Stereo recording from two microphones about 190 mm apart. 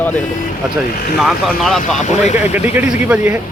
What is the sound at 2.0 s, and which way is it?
Speech, 40° left (ahead or behind).